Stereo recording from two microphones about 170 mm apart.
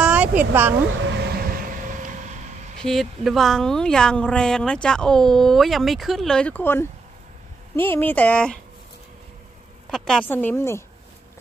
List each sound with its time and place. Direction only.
0.0 s a sound: 5° right (ahead or behind)
0.9 s vehicle: 90° right; by 2.4 s 45° right (ahead or behind)
2.8 s speech: centre (ahead or behind)
9.8 s speech: 5° left (ahead or behind)